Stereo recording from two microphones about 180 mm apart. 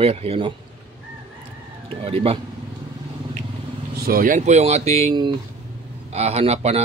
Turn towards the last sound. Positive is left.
turn(degrees=-35)  # may be behind; listen again after turning